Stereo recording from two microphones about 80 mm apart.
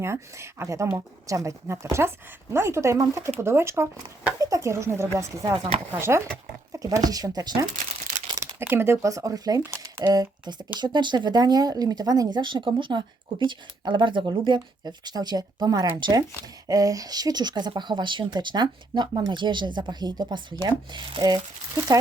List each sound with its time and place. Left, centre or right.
0.0 s speech: right
4.4 s speech: right
6.7 s speech: right
8.4 s speech: right
15.9 s speech: right
16.6 s speech: right